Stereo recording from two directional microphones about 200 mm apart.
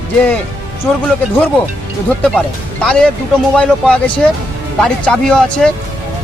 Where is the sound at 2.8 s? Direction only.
5° left (ahead or behind).